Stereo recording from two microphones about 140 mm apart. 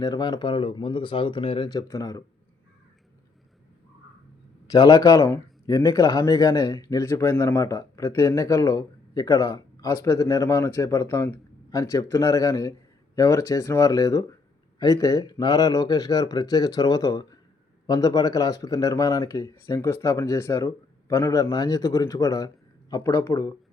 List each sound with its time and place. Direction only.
0.0 s speech: 30° left (ahead or behind)
4.7 s speech: 25° left (ahead or behind)